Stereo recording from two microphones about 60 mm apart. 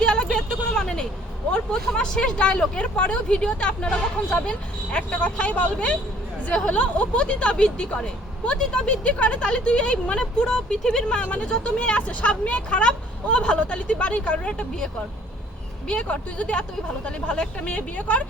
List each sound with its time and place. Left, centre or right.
0.0 s vehicle: centre
1.5 s speech: centre
15.9 s speech: centre